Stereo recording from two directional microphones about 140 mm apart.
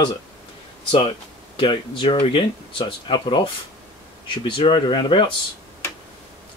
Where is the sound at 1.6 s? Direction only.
40° left (ahead or behind).